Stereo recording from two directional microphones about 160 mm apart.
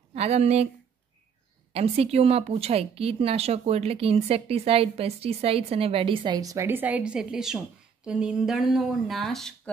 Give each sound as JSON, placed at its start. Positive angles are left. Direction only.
{"t": 0.1, "sound": "speech", "side_deg": -40}
{"t": 1.7, "sound": "speech", "side_deg": -40}